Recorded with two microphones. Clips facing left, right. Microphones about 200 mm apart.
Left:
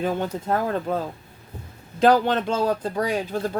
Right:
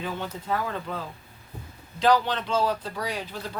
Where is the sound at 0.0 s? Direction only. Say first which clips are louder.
Left 8 dB; 45° left (ahead or behind).